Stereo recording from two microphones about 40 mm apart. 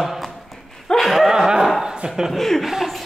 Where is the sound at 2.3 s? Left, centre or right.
Centre.